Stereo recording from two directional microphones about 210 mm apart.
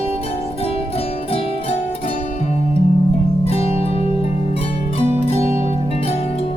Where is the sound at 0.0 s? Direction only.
30° left (ahead or behind).